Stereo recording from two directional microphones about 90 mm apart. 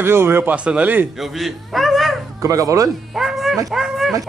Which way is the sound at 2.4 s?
40° right (ahead or behind).